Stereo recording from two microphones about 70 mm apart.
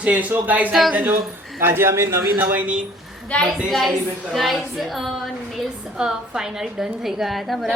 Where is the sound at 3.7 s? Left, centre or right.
Centre.